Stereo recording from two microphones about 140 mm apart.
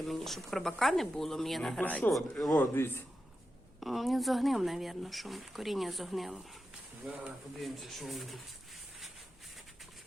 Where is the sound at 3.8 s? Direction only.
Centre (ahead or behind).